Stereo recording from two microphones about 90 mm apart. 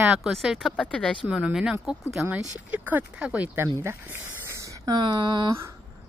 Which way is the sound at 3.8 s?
25° right (ahead or behind).